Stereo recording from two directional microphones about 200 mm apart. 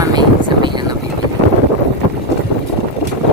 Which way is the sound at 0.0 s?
20° right (ahead or behind).